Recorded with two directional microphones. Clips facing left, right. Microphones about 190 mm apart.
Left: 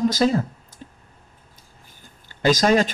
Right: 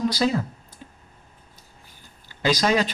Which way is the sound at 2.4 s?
45° left (ahead or behind).